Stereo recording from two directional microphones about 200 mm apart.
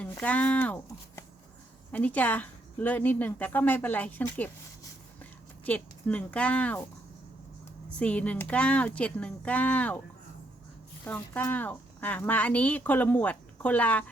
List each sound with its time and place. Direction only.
0.0 s a woman's voice: 5° left (ahead or behind)
7.9 s speech: 5° left (ahead or behind)
11.0 s speech: 10° left (ahead or behind)